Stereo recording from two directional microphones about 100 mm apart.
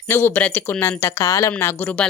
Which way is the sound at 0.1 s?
20° left (ahead or behind).